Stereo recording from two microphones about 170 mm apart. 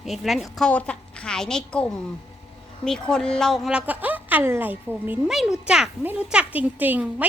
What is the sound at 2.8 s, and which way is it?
A woman's voice, 5° left (ahead or behind).